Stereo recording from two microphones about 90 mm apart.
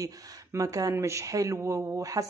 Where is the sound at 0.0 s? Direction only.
40° right (ahead or behind).